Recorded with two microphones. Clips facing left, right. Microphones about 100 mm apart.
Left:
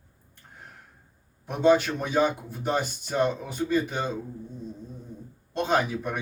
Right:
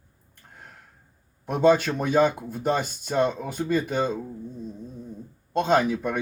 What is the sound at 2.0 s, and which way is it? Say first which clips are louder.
Speech: right 3 dB; 50° right (ahead or behind).